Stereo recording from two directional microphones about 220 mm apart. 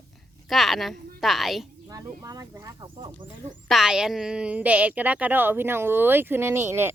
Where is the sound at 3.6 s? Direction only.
Centre (ahead or behind).